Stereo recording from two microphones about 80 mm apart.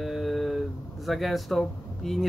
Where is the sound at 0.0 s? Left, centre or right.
Centre.